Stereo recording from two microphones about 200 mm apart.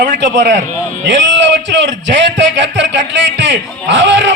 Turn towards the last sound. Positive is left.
turn(degrees=-65)  # may be behind; listen again after turning